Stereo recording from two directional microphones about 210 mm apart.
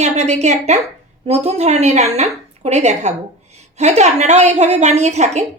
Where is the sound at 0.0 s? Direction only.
30° right (ahead or behind).